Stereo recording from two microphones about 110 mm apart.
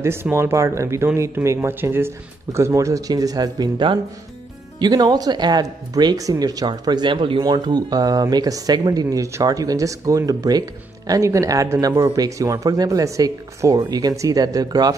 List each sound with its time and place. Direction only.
0.0 s speech: 25° right (ahead or behind)